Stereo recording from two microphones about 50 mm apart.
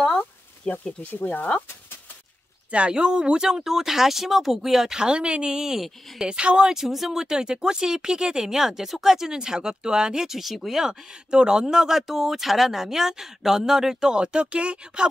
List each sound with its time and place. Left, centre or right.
0.7 s speech: centre
1.1 s speech: left
2.7 s speech: centre